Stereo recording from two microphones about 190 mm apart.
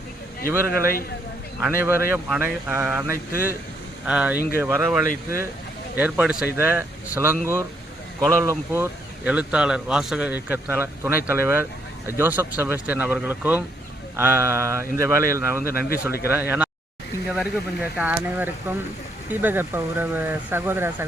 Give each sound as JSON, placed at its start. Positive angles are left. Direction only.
{"t": 0.4, "sound": "speech", "side_deg": 50}
{"t": 1.6, "sound": "speech", "side_deg": -10}